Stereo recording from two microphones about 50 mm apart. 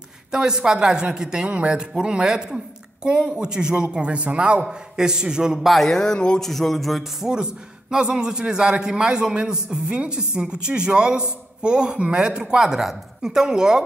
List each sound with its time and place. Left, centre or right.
0.3 s a woman's voice: centre
5.7 s speech: centre
6.4 s speech: centre
7.9 s a woman's voice: centre